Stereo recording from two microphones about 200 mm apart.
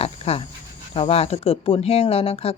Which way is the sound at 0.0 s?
30° left (ahead or behind).